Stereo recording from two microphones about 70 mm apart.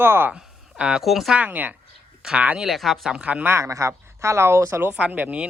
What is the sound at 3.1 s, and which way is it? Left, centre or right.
Speech, centre.